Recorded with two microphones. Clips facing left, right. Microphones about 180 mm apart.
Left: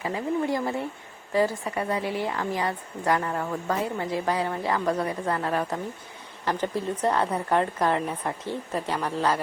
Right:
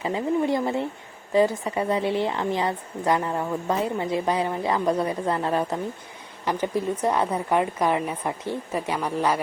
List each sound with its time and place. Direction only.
0.0 s a woman's voice: 20° right (ahead or behind)